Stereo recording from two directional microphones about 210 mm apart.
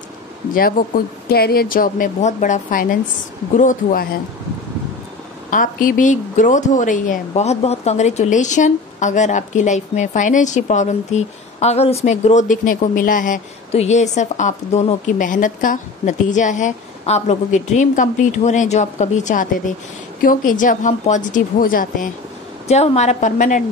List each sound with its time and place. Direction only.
0.6 s a woman's voice: 45° left (ahead or behind)
5.5 s a woman's voice: 40° left (ahead or behind)